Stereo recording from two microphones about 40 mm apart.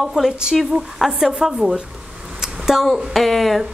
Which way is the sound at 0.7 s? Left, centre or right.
Right.